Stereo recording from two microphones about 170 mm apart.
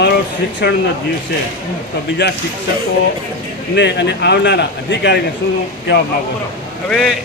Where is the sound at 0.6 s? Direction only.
85° left.